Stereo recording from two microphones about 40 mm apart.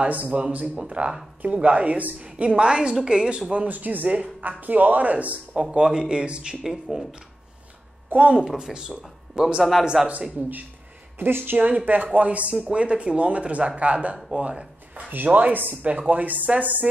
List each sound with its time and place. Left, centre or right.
0.1 s a woman's voice: right
3.6 s speech: right
5.6 s a woman's voice: right
6.6 s speech: centre
8.1 s a woman's voice: right
8.5 s a woman's voice: centre
9.9 s a man's voice: centre
11.1 s speech: right
11.5 s speech: right
15.0 s speech: right
15.8 s speech: right